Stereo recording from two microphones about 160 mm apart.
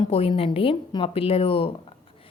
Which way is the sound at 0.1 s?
35° left (ahead or behind).